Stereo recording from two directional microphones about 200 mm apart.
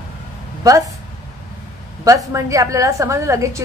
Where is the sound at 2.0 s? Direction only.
15° right (ahead or behind).